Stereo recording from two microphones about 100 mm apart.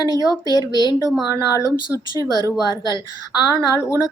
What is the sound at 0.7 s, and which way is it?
Speech, 45° left (ahead or behind).